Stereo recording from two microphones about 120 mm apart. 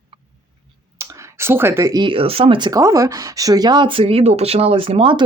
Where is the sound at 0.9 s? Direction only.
25° right (ahead or behind).